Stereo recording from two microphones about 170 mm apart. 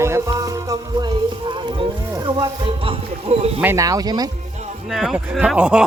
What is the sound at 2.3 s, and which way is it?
Speech, 30° right (ahead or behind).